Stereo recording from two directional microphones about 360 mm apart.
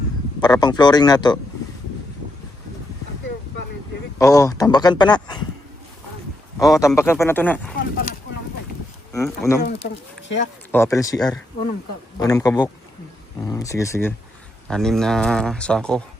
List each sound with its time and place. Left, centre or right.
0.4 s a man's voice: centre
4.2 s a man's voice: centre
6.6 s a man's voice: centre
9.1 s a man's voice: centre
9.6 s speech: left
10.7 s a man's voice: centre